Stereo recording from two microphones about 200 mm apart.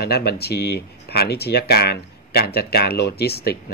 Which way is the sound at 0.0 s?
50° left (ahead or behind).